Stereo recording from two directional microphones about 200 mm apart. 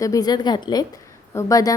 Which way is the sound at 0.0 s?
15° left (ahead or behind).